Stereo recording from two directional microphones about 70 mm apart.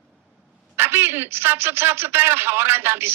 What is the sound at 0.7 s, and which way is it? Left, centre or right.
A man's voice, right.